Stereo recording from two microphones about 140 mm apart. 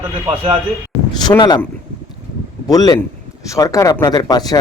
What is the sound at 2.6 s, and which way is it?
Speech, 25° left (ahead or behind).